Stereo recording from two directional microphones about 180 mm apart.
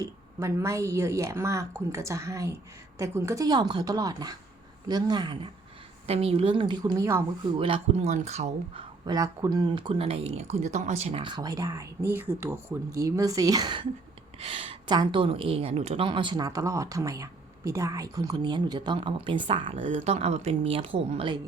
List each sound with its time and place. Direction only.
0.0 s a woman's voice: 15° right (ahead or behind)
7.6 s speech: 35° right (ahead or behind)